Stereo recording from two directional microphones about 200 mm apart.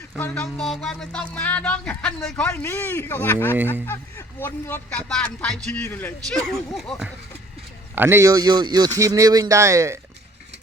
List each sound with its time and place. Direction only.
0.2 s speech: 5° left (ahead or behind)
4.4 s speech: 10° left (ahead or behind)
7.9 s speech: 10° right (ahead or behind)